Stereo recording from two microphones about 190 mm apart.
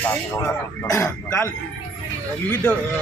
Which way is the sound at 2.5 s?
10° left (ahead or behind).